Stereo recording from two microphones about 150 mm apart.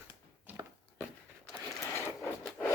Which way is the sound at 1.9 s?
15° left (ahead or behind).